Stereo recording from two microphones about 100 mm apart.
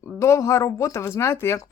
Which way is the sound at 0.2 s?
30° left (ahead or behind).